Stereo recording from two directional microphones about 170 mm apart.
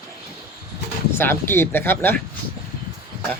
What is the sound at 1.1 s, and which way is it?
Speech, 15° left (ahead or behind).